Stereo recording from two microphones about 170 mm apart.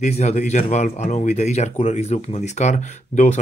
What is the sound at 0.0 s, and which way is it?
Speech, 40° left (ahead or behind).